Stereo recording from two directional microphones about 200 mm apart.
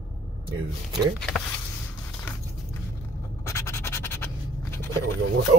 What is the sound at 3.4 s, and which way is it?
Scratch, 15° left (ahead or behind).